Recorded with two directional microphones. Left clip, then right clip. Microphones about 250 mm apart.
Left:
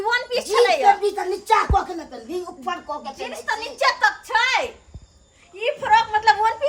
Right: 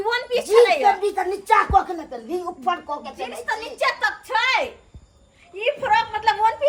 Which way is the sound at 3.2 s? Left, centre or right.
Centre.